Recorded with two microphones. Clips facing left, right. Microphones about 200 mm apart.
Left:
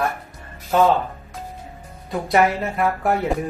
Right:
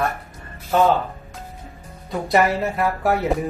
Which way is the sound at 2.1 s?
Centre (ahead or behind).